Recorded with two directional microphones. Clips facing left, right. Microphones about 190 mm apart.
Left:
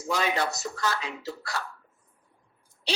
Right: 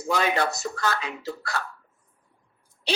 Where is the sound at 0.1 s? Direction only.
55° right (ahead or behind).